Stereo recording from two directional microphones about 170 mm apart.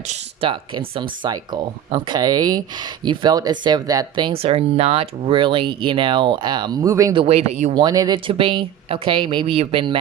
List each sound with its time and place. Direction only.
0.1 s speech: 30° right (ahead or behind)
7.2 s speech: 35° right (ahead or behind)
7.8 s speech: 25° right (ahead or behind)